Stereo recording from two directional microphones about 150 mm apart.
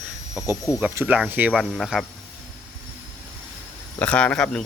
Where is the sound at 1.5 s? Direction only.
Centre (ahead or behind).